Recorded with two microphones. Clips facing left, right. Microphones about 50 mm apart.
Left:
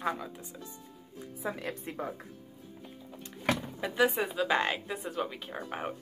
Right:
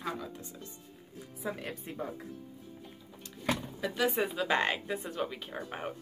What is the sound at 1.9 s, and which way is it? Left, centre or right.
Speech, left.